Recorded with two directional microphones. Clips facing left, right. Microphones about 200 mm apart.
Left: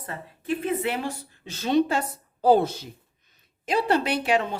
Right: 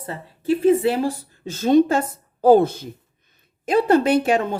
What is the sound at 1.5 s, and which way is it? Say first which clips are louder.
A woman's voice: right 7 dB; 45° right (ahead or behind).